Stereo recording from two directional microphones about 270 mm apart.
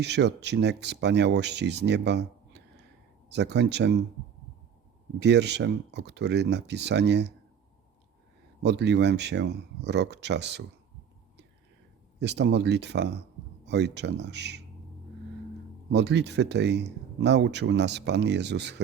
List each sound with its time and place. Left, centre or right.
0.0 s speech: right
5.2 s speech: right
8.6 s speech: right
12.2 s speech: right
15.9 s speech: right